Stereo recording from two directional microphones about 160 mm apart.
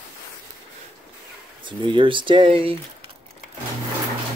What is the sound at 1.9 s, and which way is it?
Speech, 30° right (ahead or behind).